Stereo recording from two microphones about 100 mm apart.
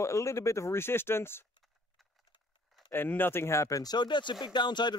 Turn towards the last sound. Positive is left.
turn(degrees=50)  # may be behind; listen again after turning